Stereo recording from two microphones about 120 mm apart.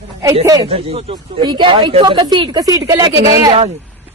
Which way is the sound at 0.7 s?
55° right (ahead or behind).